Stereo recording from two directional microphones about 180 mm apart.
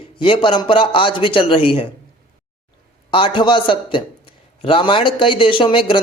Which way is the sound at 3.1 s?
30° left (ahead or behind).